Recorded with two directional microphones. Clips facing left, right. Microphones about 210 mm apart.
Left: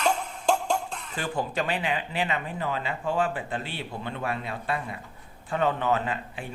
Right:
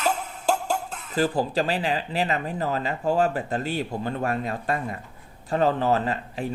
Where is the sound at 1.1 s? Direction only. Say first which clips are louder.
Right 7 dB; 35° right (ahead or behind).